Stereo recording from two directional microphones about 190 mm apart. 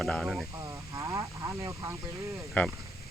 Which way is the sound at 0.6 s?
15° right (ahead or behind).